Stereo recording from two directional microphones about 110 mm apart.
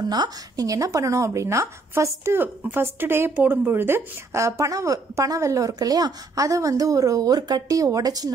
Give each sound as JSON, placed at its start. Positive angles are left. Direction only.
{"t": 0.1, "sound": "speech", "side_deg": -35}